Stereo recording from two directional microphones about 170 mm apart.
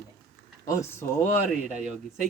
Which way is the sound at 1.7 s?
45° right (ahead or behind).